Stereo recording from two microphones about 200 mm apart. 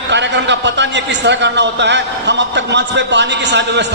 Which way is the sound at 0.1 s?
60° right (ahead or behind).